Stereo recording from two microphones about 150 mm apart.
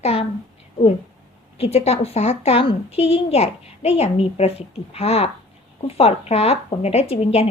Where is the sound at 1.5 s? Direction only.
45° left (ahead or behind).